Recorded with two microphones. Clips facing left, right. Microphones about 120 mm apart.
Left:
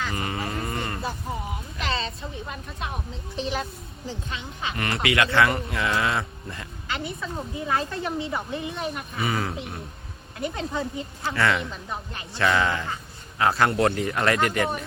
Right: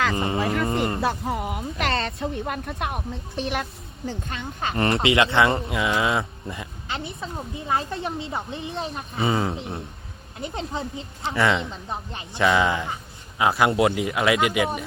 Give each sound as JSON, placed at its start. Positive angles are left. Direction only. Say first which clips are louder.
{"t": 0.2, "sound": "speech", "louder": "right 6 dB", "side_deg": -25}
{"t": 0.6, "sound": "a sound", "louder": "right 7 dB", "side_deg": -25}
{"t": 1.0, "sound": "speech", "louder": "right 6 dB", "side_deg": -80}
{"t": 4.8, "sound": "speech", "louder": "right 4 dB", "side_deg": -30}